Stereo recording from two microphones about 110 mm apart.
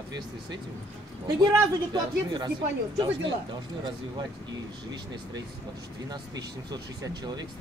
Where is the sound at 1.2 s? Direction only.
35° right (ahead or behind).